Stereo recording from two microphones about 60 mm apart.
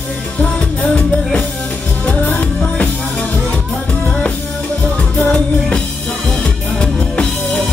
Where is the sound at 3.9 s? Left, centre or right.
Centre.